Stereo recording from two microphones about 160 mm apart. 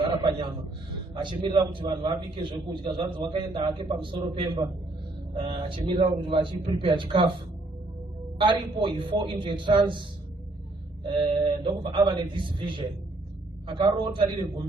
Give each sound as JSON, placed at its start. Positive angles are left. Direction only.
{"t": 0.1, "sound": "a sound", "side_deg": -30}
{"t": 1.1, "sound": "a man's voice", "side_deg": -30}
{"t": 8.4, "sound": "speech", "side_deg": -30}